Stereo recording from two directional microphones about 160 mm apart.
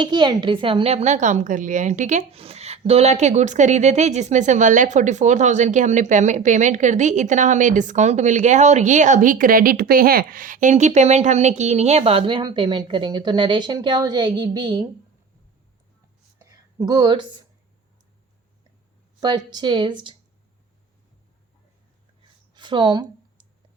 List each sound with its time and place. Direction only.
0.0 s speech: 25° right (ahead or behind)
16.7 s speech: 25° right (ahead or behind)
19.2 s speech: 25° right (ahead or behind)
22.5 s a sound: 30° right (ahead or behind)